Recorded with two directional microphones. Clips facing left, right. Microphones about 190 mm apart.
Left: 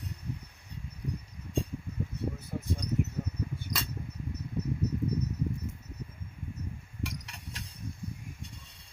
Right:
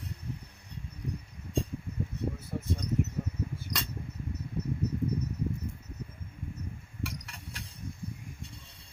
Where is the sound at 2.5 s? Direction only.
Centre (ahead or behind).